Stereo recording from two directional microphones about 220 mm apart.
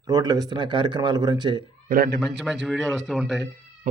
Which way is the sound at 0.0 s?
15° right (ahead or behind).